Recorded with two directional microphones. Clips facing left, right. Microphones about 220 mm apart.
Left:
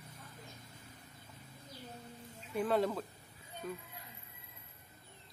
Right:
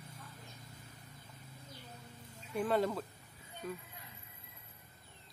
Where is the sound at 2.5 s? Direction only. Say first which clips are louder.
Even; centre (ahead or behind).